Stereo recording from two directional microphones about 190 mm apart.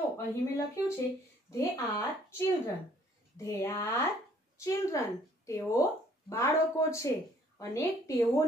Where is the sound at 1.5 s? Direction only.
15° left (ahead or behind).